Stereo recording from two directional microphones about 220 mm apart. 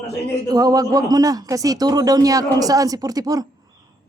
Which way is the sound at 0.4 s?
15° right (ahead or behind).